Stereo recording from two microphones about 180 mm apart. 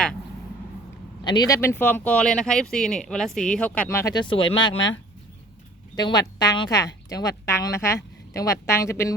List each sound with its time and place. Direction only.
1.2 s speech: 25° left (ahead or behind)
6.0 s speech: 20° left (ahead or behind)